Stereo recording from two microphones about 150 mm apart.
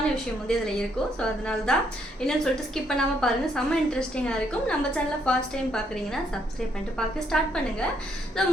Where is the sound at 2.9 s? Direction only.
5° left (ahead or behind).